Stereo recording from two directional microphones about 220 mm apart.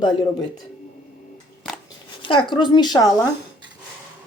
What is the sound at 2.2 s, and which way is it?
Speech, 20° left (ahead or behind).